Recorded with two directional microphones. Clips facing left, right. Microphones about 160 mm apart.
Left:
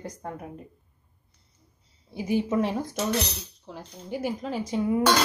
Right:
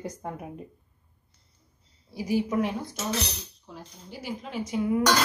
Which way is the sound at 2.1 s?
20° left (ahead or behind).